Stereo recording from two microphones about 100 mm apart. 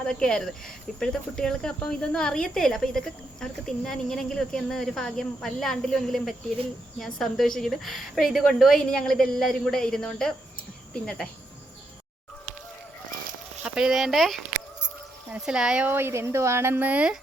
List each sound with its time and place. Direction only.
0.0 s speech: 10° left (ahead or behind)
13.6 s a sound: 5° right (ahead or behind)
15.3 s a woman's voice: 5° right (ahead or behind)